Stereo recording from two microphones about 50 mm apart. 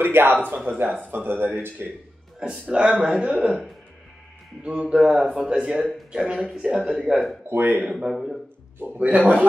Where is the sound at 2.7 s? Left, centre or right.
Centre.